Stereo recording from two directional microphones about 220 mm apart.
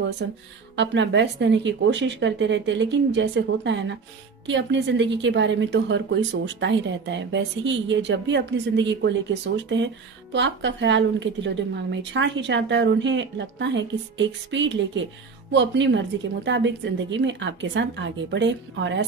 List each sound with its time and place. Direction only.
0.2 s a woman's voice: 55° right (ahead or behind)